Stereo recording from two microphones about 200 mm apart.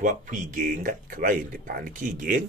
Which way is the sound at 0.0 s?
40° right (ahead or behind).